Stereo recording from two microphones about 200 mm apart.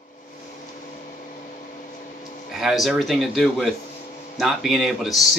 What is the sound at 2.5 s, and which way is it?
Speech, centre (ahead or behind).